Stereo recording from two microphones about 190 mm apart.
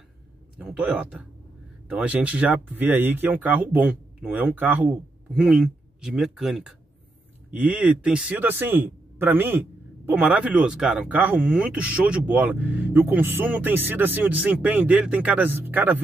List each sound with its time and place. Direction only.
0.6 s a man's voice: 5° right (ahead or behind)